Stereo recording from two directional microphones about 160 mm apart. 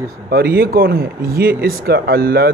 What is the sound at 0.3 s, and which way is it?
Speech, 75° right (ahead or behind).